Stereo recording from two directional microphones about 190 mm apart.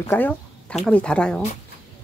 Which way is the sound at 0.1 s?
10° left (ahead or behind).